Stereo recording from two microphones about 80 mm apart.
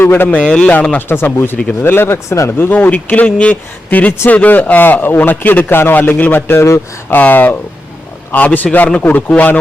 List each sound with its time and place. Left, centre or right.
0.0 s a man's voice: left
0.4 s speech: centre
1.0 s a man's voice: left